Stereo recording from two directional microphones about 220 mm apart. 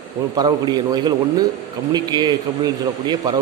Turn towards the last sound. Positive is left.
turn(degrees=-20)  # may be behind; listen again after turning